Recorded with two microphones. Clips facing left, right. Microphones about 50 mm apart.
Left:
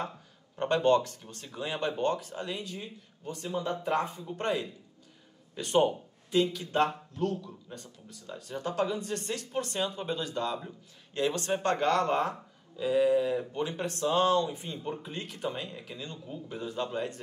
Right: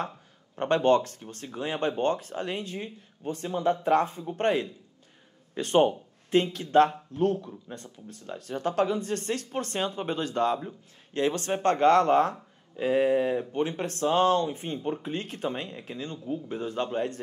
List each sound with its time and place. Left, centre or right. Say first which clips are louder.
0.6 s speech: right 2 dB; right